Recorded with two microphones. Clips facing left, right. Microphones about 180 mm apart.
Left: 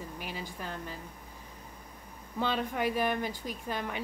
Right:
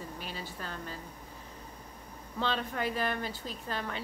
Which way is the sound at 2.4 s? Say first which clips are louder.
Left 2 dB; 10° left (ahead or behind).